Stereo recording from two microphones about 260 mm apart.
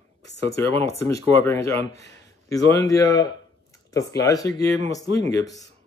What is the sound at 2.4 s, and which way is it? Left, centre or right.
Speech, centre.